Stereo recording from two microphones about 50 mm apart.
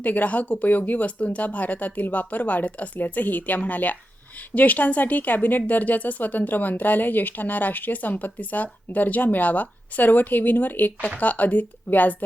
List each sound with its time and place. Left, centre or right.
0.0 s speech: left